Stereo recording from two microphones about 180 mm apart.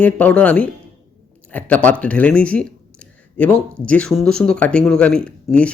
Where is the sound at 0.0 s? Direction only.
10° left (ahead or behind).